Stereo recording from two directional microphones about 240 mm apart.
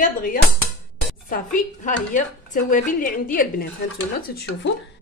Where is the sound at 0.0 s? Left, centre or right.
Left.